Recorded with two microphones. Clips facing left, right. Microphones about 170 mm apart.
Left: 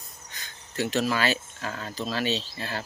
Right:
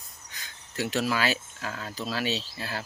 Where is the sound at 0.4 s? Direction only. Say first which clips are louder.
Left 2 dB; 5° right (ahead or behind).